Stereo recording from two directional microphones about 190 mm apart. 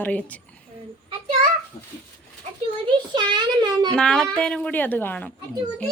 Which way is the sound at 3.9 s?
5° left (ahead or behind).